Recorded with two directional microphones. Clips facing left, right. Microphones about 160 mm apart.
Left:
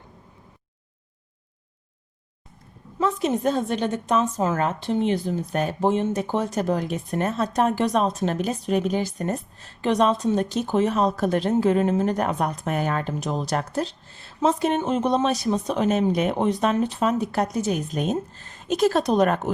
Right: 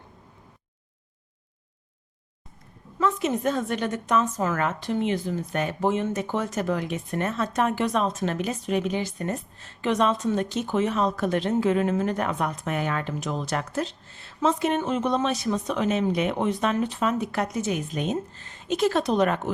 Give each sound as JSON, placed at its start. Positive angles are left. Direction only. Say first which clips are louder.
{"t": 3.0, "sound": "a woman's voice", "louder": "left 2 dB", "side_deg": 35}